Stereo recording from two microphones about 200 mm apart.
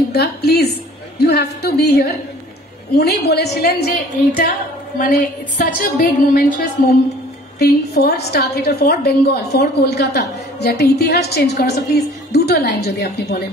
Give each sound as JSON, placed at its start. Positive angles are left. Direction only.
{"t": 0.1, "sound": "a woman's voice", "side_deg": 55}
{"t": 7.5, "sound": "a woman's voice", "side_deg": 55}